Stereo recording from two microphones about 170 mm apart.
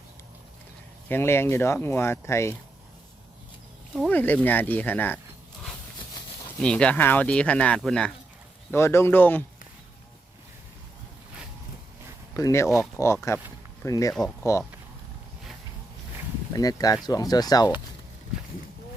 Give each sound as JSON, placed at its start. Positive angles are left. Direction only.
{"t": 1.0, "sound": "speech", "side_deg": 15}
{"t": 3.9, "sound": "speech", "side_deg": 5}
{"t": 6.6, "sound": "speech", "side_deg": 5}
{"t": 8.7, "sound": "speech", "side_deg": 15}
{"t": 12.3, "sound": "speech", "side_deg": 20}
{"t": 14.1, "sound": "speech", "side_deg": 0}
{"t": 16.5, "sound": "speech", "side_deg": 20}